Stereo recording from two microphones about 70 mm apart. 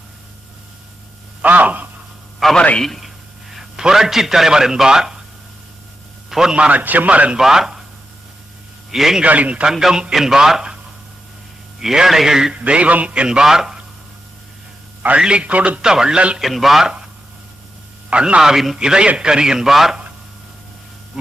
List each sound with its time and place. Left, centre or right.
1.4 s speech: right
2.6 s a man's voice: centre
2.8 s speech: centre
3.5 s a man's voice: centre
6.3 s a man's voice: centre
7.3 s a man's voice: centre
8.9 s a man's voice: centre
9.2 s a man's voice: right
9.7 s a man's voice: centre
11.8 s a man's voice: centre
15.0 s a man's voice: centre
15.8 s a man's voice: centre
16.4 s a man's voice: centre
18.1 s a man's voice: centre